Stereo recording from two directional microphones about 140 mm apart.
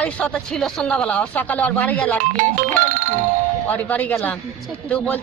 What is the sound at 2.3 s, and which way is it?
Music, 65° right (ahead or behind).